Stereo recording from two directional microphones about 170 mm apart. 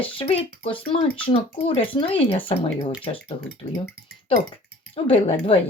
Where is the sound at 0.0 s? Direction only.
30° left (ahead or behind).